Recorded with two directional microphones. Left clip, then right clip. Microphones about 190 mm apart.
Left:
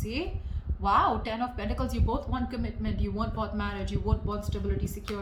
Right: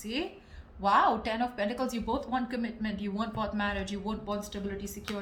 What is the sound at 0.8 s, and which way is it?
Speech, 35° right (ahead or behind).